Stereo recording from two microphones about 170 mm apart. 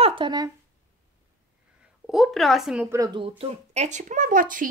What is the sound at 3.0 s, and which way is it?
A woman's voice, 30° right (ahead or behind).